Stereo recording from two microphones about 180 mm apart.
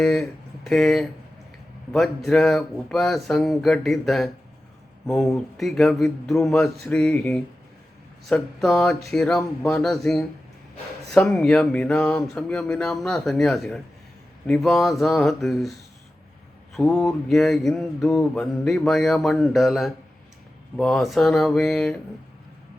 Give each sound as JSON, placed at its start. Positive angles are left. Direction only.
{"t": 0.0, "sound": "speech", "side_deg": 5}
{"t": 9.4, "sound": "speech", "side_deg": 15}
{"t": 9.8, "sound": "speech", "side_deg": 0}
{"t": 16.7, "sound": "speech", "side_deg": 0}